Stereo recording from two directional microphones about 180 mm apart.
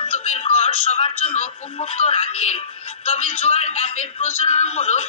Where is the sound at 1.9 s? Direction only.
35° left (ahead or behind).